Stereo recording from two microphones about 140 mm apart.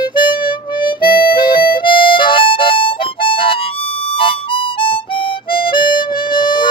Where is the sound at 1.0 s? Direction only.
35° left (ahead or behind).